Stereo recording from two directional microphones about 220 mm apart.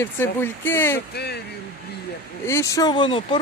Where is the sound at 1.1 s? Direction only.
50° left (ahead or behind).